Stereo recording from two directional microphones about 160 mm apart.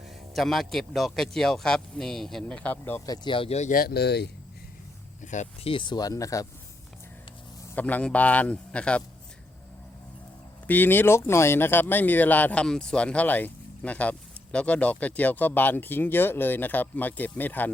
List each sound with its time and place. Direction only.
0.3 s speech: centre (ahead or behind)
3.1 s speech: 30° left (ahead or behind)
3.7 s speech: 70° left (ahead or behind); by 4.3 s 90° left
5.2 s speech: 50° left (ahead or behind)
5.7 s speech: 30° left (ahead or behind)
7.8 s speech: 10° left (ahead or behind)
10.7 s speech: 10° left (ahead or behind)